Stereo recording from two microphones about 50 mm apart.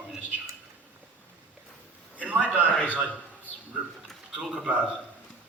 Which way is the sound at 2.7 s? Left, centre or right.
Left.